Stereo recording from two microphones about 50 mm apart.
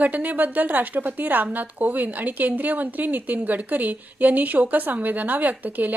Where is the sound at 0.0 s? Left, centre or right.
Right.